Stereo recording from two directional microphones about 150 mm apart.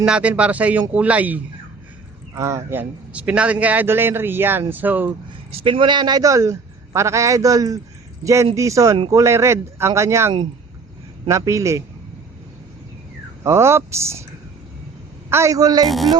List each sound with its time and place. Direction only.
0.0 s a man's voice: 5° right (ahead or behind)
5.5 s a man's voice: 40° right (ahead or behind); by 11.8 s 20° right (ahead or behind)
13.4 s a man's voice: 15° right (ahead or behind)
15.3 s a man's voice: 20° right (ahead or behind)
15.9 s music: centre (ahead or behind)